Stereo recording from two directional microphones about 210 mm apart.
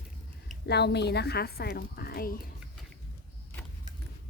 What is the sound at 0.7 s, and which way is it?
A woman's voice, 50° left (ahead or behind).